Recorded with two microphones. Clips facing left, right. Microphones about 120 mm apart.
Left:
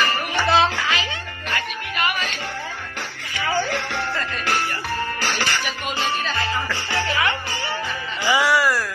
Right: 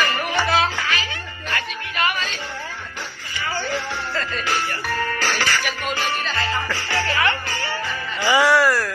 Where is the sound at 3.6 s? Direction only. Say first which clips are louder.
Left 1 dB; 75° left (ahead or behind).